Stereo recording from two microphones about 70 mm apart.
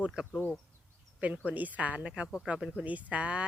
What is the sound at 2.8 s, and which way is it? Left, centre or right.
Speech, right.